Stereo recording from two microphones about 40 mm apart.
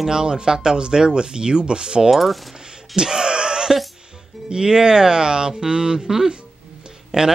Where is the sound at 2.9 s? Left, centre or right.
Centre.